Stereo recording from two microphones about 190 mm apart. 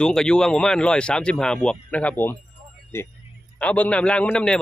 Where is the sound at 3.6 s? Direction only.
5° left (ahead or behind).